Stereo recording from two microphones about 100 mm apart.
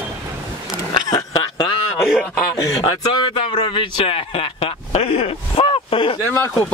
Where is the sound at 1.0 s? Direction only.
45° left (ahead or behind).